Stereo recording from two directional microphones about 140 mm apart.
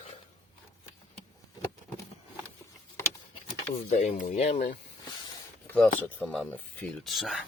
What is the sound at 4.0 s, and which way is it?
Speech, 65° left (ahead or behind).